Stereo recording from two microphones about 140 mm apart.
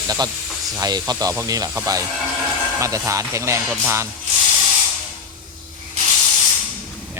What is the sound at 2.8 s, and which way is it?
Speech, 20° right (ahead or behind).